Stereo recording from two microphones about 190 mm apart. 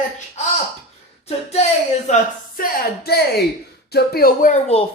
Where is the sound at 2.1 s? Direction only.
35° left (ahead or behind).